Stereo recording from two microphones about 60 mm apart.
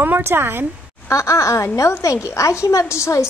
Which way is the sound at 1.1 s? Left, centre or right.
Left.